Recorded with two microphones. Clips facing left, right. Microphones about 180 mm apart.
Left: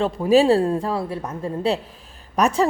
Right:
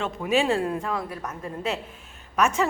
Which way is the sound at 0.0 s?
35° left (ahead or behind).